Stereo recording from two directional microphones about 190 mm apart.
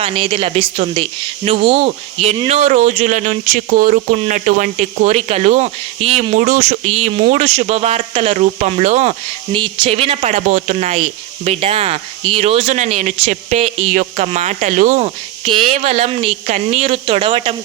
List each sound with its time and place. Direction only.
0.0 s speech: 30° right (ahead or behind)